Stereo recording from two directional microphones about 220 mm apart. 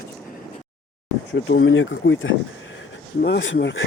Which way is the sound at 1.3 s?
60° left (ahead or behind).